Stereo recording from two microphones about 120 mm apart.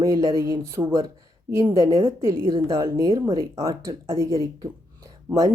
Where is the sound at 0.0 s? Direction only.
25° right (ahead or behind).